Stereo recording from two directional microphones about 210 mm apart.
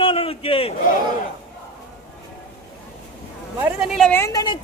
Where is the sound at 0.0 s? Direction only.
25° left (ahead or behind).